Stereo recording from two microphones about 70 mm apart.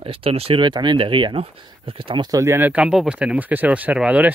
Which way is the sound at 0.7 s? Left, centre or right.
Right.